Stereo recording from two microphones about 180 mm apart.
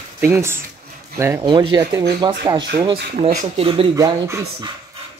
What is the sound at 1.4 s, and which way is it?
Speech, 25° right (ahead or behind).